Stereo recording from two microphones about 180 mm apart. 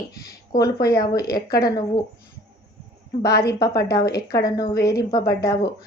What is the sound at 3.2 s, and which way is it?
A woman's voice, 65° left (ahead or behind).